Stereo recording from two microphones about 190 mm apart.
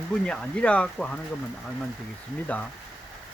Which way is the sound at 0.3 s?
5° left (ahead or behind).